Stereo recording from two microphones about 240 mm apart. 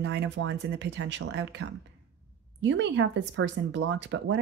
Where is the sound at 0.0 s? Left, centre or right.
Right.